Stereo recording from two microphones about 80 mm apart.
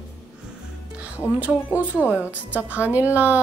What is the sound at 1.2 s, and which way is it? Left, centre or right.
A woman's voice, centre.